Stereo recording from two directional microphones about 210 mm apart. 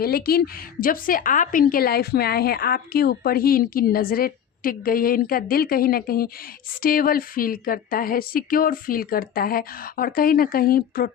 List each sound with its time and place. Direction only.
0.0 s a woman's voice: 45° left (ahead or behind)